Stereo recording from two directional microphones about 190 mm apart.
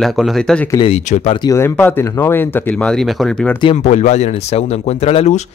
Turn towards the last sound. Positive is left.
turn(degrees=35)  # may be behind; listen again after turning